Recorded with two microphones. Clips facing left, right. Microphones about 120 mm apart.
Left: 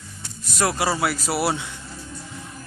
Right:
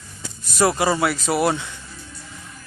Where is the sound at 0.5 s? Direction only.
Centre (ahead or behind).